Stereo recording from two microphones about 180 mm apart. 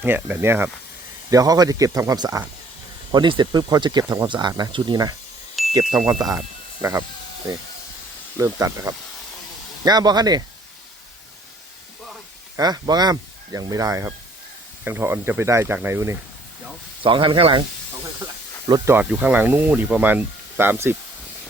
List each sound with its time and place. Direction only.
0.0 s speech: 10° right (ahead or behind)
5.8 s speech: 5° right (ahead or behind)
6.1 s speech: 20° right (ahead or behind)
8.4 s speech: 20° right (ahead or behind)
12.5 s speech: 20° right (ahead or behind)
17.0 s speech: 25° right (ahead or behind)
18.7 s speech: 15° right (ahead or behind)